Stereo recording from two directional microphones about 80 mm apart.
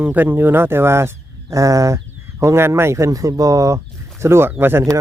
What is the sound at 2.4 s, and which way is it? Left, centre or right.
Speech, right.